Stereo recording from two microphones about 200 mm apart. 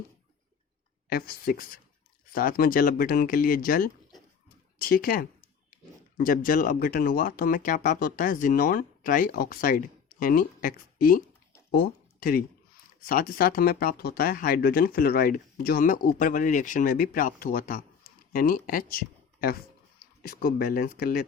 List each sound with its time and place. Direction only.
1.1 s speech: 50° left (ahead or behind)